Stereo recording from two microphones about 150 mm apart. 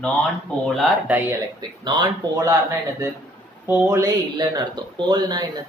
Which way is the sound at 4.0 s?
25° right (ahead or behind).